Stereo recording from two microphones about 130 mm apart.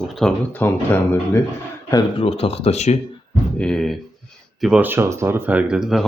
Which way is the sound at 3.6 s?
5° left (ahead or behind).